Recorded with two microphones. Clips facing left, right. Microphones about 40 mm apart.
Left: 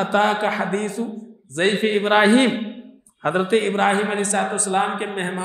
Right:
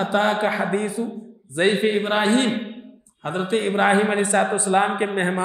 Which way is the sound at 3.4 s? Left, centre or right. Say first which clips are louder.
Right 1 dB; centre.